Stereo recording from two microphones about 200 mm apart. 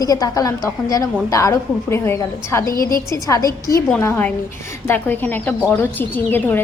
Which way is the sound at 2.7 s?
45° left (ahead or behind).